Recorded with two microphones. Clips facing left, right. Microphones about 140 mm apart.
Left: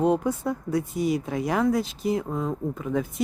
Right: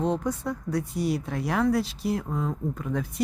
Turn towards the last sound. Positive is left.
turn(degrees=0)  # may be behind; listen again after turning